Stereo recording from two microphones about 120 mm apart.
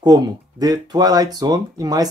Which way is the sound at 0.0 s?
35° right (ahead or behind).